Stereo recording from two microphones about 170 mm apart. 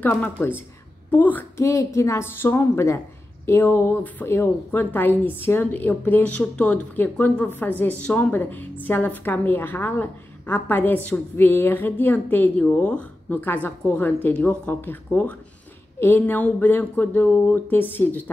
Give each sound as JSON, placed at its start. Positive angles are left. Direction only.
{"t": 0.0, "sound": "a woman's voice", "side_deg": 10}